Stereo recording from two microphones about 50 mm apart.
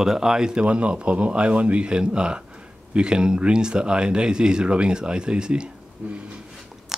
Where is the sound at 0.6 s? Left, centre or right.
Right.